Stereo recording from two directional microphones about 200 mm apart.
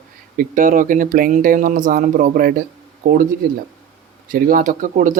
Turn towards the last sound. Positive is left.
turn(degrees=-40)  # may be behind; listen again after turning